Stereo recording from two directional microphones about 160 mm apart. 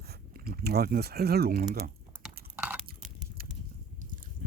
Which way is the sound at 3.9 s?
55° right (ahead or behind).